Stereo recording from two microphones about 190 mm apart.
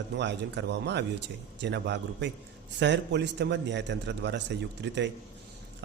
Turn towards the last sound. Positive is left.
turn(degrees=-65)  # may be behind; listen again after turning